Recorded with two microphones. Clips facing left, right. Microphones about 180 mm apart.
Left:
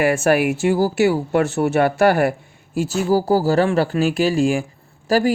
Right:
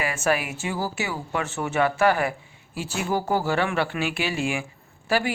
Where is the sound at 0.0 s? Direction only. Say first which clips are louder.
Left 9 dB; 60° left (ahead or behind).